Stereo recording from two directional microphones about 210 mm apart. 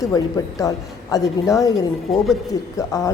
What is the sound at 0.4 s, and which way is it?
A woman's voice, 15° left (ahead or behind).